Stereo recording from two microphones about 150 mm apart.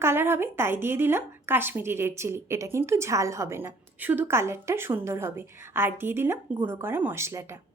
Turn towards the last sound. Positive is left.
turn(degrees=-15)  # may be behind; listen again after turning